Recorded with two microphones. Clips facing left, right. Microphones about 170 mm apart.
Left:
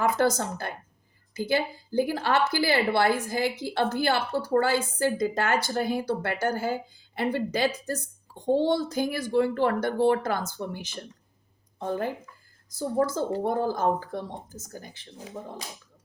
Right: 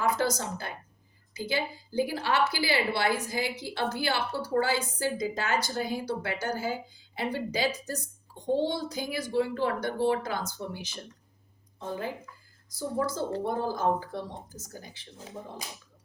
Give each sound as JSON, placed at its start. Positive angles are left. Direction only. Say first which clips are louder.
{"t": 0.0, "sound": "a woman's voice", "louder": "left 4 dB", "side_deg": 50}